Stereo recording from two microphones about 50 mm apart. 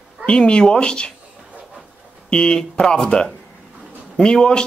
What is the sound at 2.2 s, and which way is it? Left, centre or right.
Speech, centre.